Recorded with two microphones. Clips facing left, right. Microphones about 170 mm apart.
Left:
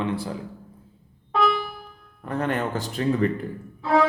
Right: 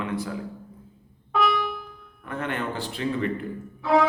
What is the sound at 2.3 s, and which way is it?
Speech, 40° left (ahead or behind).